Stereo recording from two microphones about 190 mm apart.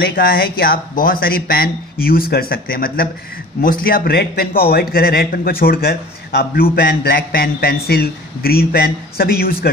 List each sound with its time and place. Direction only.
0.0 s a man's voice: 50° left (ahead or behind)